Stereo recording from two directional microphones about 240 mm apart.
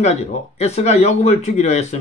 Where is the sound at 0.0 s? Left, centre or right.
Left.